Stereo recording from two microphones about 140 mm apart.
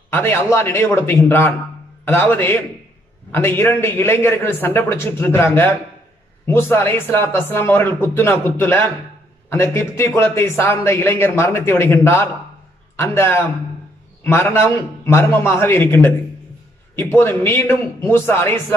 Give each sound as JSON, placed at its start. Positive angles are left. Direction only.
{"t": 0.1, "sound": "a man's voice", "side_deg": 15}